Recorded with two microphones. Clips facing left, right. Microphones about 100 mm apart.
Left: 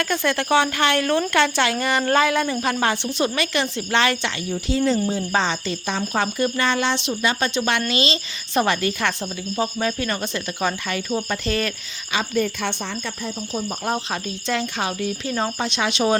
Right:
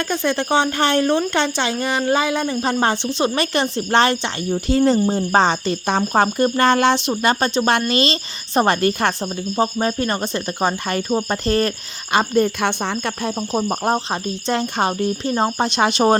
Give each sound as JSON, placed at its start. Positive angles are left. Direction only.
{"t": 0.0, "sound": "speech", "side_deg": -20}
{"t": 3.3, "sound": "speech", "side_deg": -35}
{"t": 4.9, "sound": "speech", "side_deg": -45}